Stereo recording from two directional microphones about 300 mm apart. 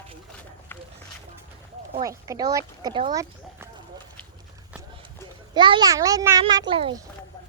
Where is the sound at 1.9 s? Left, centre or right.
Centre.